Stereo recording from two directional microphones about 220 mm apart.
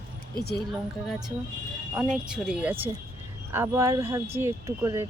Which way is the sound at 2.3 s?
5° right (ahead or behind).